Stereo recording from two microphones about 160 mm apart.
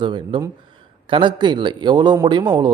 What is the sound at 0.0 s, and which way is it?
Speech, 30° right (ahead or behind).